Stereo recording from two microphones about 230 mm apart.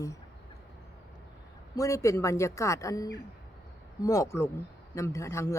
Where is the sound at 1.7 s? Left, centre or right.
Centre.